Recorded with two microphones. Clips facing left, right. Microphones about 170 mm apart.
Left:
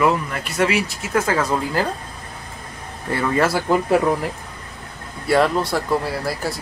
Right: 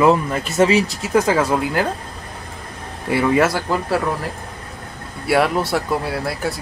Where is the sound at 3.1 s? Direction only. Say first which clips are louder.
Right 3 dB; 10° right (ahead or behind).